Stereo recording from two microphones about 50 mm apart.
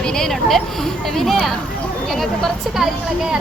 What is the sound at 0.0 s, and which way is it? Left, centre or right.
Speech, centre.